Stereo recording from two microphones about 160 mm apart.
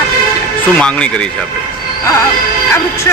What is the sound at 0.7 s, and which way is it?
Speech, 5° left (ahead or behind).